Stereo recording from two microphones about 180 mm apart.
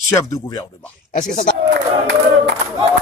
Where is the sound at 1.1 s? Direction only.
45° left (ahead or behind).